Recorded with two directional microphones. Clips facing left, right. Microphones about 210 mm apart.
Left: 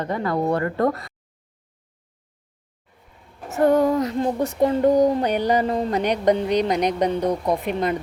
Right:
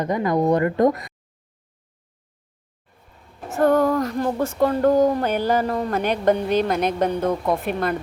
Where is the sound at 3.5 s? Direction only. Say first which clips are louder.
Even; 20° left (ahead or behind).